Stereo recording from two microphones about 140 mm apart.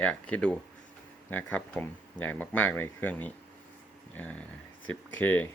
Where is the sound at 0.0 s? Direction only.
10° left (ahead or behind).